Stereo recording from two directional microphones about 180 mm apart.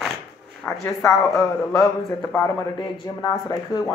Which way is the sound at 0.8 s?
15° left (ahead or behind).